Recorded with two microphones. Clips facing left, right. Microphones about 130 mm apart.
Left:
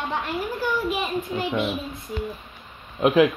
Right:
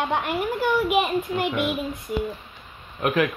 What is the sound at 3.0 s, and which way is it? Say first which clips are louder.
Speech: left 5 dB; 10° left (ahead or behind).